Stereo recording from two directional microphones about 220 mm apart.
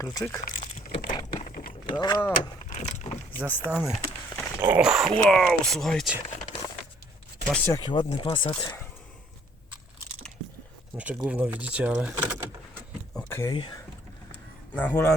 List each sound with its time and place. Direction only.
0.0 s speech: 15° left (ahead or behind)
0.4 s a sound: 30° left (ahead or behind)
1.5 s typing: 40° left (ahead or behind)
1.9 s speech: 20° left (ahead or behind)
2.6 s vehicle: 30° left (ahead or behind)
3.3 s speech: 10° left (ahead or behind)
3.7 s speech: centre (ahead or behind)
7.4 s speech: 5° left (ahead or behind)
10.9 s speech: 5° right (ahead or behind)
13.1 s a sound: 10° left (ahead or behind)
14.8 s speech: 5° left (ahead or behind)